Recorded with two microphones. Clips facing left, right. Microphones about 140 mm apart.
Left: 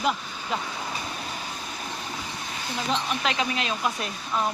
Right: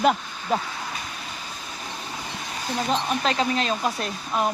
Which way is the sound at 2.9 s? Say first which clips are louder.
Right 2 dB; 35° right (ahead or behind).